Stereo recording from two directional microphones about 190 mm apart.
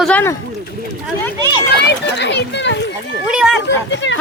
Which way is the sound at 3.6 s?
70° left (ahead or behind).